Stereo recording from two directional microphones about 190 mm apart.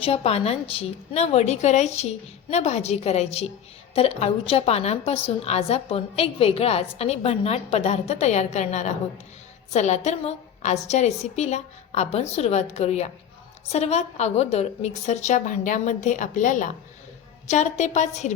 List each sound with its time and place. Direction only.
0.0 s a woman's voice: 30° left (ahead or behind)